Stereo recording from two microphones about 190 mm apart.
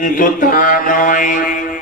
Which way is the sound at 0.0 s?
45° left (ahead or behind).